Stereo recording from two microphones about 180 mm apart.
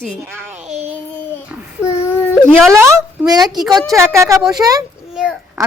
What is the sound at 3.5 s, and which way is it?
Speech, centre (ahead or behind).